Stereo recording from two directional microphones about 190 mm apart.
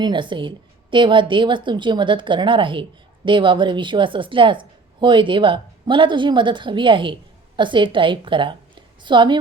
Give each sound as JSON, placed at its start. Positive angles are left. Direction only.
{"t": 0.0, "sound": "a woman's voice", "side_deg": -25}